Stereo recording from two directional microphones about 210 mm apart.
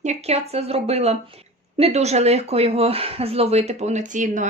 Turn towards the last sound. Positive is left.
turn(degrees=-35)  # may be behind; listen again after turning